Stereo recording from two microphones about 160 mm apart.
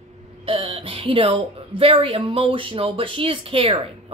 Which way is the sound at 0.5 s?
35° right (ahead or behind).